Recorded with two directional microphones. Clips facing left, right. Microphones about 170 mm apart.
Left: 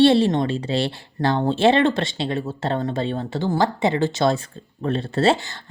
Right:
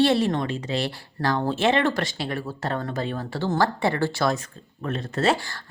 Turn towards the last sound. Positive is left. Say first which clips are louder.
# left 4 dB
turn(degrees=20)  # may be behind; listen again after turning